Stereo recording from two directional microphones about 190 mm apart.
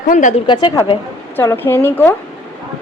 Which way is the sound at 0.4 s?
25° left (ahead or behind).